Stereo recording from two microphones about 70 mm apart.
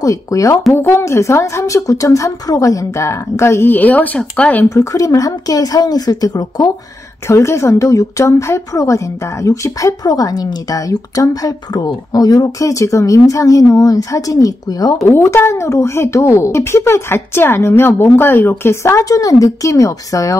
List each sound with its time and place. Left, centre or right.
0.0 s a woman's voice: left
0.7 s a woman's voice: left
3.7 s speech: left
4.6 s a woman's voice: left
7.2 s a woman's voice: left
10.0 s a woman's voice: left
15.0 s a woman's voice: left